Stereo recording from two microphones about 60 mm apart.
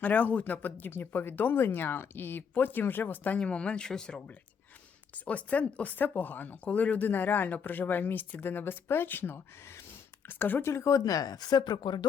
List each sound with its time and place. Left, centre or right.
0.0 s speech: left
3.3 s speech: centre; by 9.8 s left
10.2 s speech: left
10.7 s speech: left